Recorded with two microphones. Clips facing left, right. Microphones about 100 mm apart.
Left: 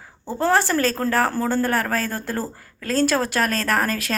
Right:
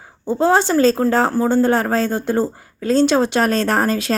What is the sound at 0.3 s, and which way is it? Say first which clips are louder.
Speech: right 4 dB; 20° right (ahead or behind).